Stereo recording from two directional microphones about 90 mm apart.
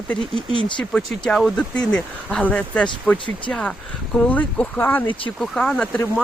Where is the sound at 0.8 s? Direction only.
10° left (ahead or behind).